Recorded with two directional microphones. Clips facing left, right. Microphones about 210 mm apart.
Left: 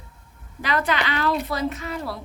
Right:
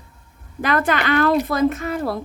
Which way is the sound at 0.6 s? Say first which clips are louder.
Right 4 dB; 50° right (ahead or behind).